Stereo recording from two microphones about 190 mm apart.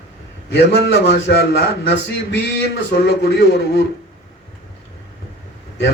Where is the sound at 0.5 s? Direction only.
65° left (ahead or behind).